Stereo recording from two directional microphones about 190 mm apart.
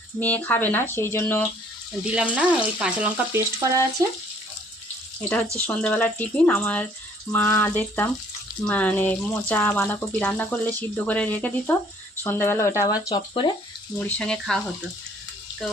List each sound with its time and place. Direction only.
0.2 s speech: 10° left (ahead or behind)
2.0 s frying: 5° right (ahead or behind)
5.5 s speech: 10° left (ahead or behind); by 13.5 s 25° left (ahead or behind)
14.0 s speech: 5° left (ahead or behind)